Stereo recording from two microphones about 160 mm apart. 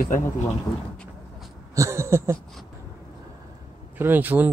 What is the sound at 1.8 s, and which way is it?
Speech, 15° right (ahead or behind).